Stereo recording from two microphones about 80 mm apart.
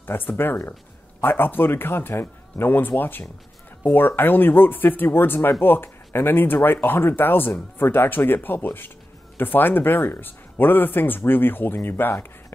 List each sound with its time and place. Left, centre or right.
0.0 s speech: left